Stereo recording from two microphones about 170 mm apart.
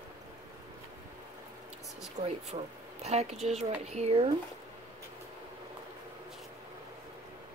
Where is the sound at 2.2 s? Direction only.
40° right (ahead or behind).